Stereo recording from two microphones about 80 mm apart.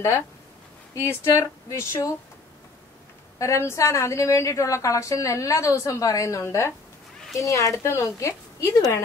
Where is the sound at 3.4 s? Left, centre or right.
Left.